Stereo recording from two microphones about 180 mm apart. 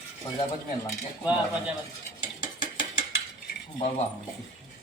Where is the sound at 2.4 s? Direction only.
25° left (ahead or behind).